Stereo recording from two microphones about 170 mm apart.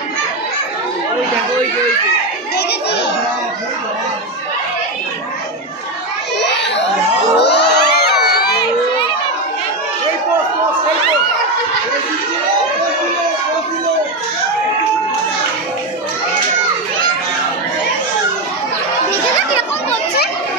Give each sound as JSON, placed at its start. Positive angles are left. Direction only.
{"t": 2.5, "sound": "children playing", "side_deg": 90}
{"t": 6.4, "sound": "a sound", "side_deg": 90}
{"t": 7.3, "sound": "crowd", "side_deg": 85}